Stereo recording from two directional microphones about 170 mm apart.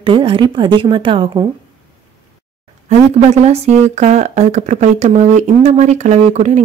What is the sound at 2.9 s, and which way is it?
Speech, 40° right (ahead or behind).